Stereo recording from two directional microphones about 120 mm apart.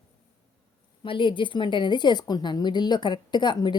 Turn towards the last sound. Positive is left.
turn(degrees=40)  # may be behind; listen again after turning